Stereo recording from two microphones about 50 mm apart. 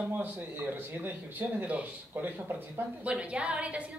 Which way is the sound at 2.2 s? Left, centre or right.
Right.